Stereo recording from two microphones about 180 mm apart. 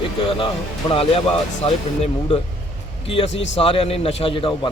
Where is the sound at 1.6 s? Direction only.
35° left (ahead or behind).